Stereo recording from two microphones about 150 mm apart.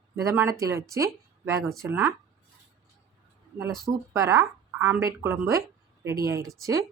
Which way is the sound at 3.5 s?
20° right (ahead or behind).